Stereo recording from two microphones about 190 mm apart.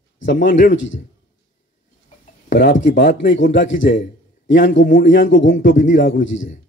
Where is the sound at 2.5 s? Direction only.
70° left (ahead or behind).